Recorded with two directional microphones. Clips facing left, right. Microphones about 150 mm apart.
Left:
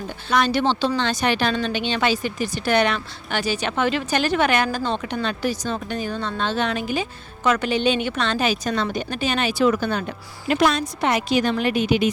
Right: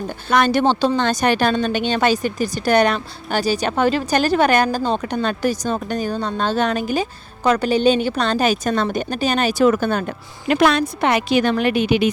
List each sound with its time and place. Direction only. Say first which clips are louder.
0.3 s a woman's voice: right 4 dB; 50° right (ahead or behind); by 12.0 s 65° right (ahead or behind)